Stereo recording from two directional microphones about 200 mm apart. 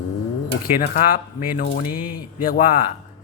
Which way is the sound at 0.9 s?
45° left (ahead or behind).